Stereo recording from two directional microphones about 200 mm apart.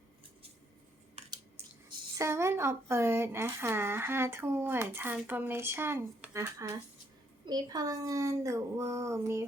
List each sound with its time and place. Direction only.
1.3 s speech: 20° right (ahead or behind)